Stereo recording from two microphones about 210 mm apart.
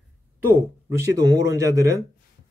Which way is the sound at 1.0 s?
15° right (ahead or behind).